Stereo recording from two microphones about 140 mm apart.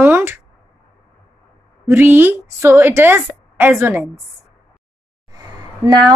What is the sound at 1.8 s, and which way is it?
A woman's voice, 15° right (ahead or behind).